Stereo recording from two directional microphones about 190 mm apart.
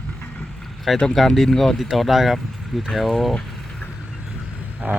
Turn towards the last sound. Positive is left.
turn(degrees=-5)  # may be behind; listen again after turning